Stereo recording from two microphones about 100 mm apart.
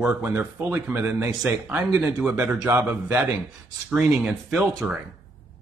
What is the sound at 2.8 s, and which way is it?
Speech, 15° right (ahead or behind).